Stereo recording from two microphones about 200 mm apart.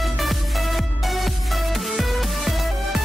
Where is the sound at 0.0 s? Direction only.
Centre (ahead or behind).